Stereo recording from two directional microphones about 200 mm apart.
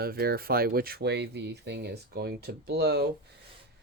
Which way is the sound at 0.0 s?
50° right (ahead or behind).